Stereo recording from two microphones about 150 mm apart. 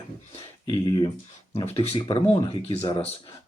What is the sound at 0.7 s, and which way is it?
Speech, 35° left (ahead or behind).